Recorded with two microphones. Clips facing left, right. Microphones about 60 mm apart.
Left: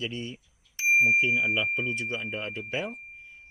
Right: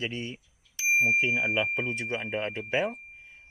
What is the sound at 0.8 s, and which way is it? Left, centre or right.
Bicycle bell, left.